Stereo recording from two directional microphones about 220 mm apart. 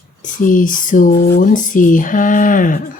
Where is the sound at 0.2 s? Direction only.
35° left (ahead or behind).